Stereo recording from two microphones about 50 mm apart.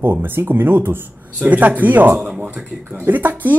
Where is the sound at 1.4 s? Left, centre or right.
Right.